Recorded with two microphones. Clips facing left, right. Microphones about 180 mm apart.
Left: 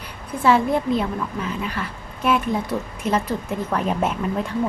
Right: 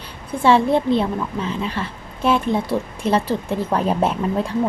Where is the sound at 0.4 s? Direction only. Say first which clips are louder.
Right 3 dB; 30° right (ahead or behind).